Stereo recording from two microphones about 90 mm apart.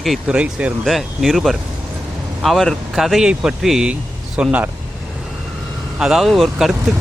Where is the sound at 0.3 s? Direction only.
10° right (ahead or behind).